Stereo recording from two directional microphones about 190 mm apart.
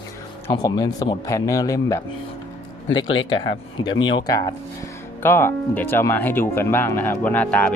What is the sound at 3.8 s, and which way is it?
Speech, 25° left (ahead or behind).